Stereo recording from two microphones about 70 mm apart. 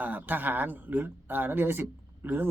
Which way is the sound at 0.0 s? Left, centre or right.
Right.